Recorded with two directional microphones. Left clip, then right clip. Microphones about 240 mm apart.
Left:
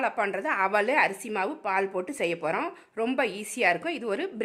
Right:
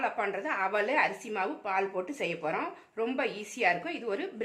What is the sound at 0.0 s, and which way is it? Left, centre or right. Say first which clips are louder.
A woman's voice: left 4 dB; left.